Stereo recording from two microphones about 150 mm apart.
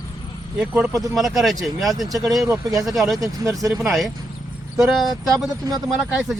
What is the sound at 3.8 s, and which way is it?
Speech, centre (ahead or behind).